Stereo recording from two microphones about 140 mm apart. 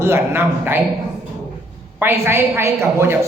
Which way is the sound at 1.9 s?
15° right (ahead or behind).